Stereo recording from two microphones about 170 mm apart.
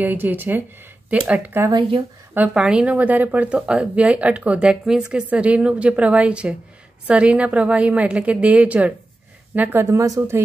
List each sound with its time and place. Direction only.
0.0 s speech: 10° right (ahead or behind)
1.7 s speech: 30° right (ahead or behind)
2.3 s speech: 5° right (ahead or behind)